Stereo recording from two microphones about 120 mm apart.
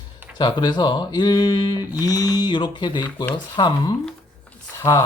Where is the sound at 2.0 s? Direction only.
30° left (ahead or behind).